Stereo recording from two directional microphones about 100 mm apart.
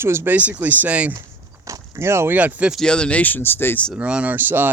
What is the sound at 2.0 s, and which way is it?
Speech, 25° right (ahead or behind).